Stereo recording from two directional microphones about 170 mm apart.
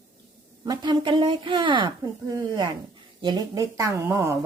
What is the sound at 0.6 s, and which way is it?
Speech, 25° right (ahead or behind).